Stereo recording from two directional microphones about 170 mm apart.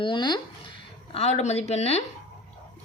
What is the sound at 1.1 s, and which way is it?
Speech, 40° left (ahead or behind).